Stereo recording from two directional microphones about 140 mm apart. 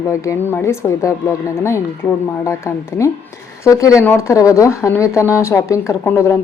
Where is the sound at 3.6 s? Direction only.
20° left (ahead or behind).